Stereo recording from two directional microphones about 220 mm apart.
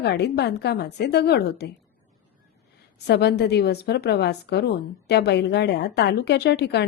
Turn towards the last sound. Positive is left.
turn(degrees=50)  # may be behind; listen again after turning